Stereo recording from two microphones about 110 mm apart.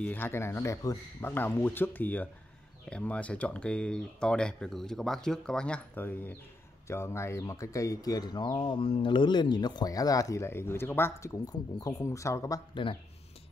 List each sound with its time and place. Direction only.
0.0 s speech: 15° left (ahead or behind)